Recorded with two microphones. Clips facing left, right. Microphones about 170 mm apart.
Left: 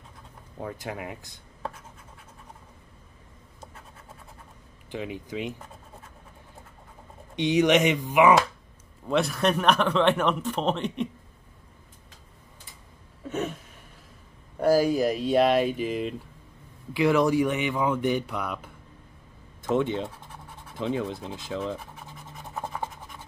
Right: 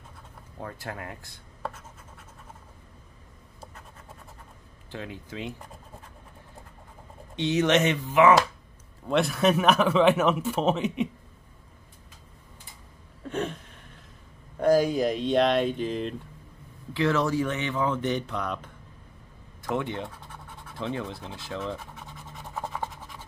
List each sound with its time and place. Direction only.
0.7 s speech: 15° left (ahead or behind)
4.9 s speech: 15° left (ahead or behind)
7.3 s speech: 15° left (ahead or behind)
9.0 s speech: centre (ahead or behind)
13.3 s a sound: 5° left (ahead or behind)
14.6 s speech: 5° left (ahead or behind)
19.6 s speech: 20° left (ahead or behind)
20.7 s scratch: 15° left (ahead or behind)